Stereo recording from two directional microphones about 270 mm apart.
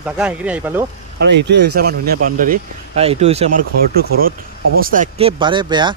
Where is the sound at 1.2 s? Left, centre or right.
Right.